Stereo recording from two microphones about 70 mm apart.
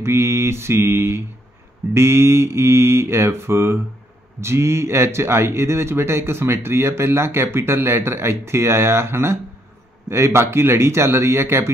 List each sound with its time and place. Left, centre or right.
0.0 s speech: right